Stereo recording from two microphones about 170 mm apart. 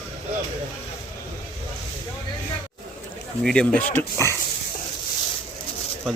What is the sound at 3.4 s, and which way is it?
Speech, 5° left (ahead or behind).